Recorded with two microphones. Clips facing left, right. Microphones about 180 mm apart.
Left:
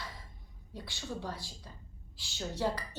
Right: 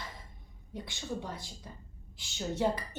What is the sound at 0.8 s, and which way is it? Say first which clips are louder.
A woman's voice: right 2 dB; 20° right (ahead or behind).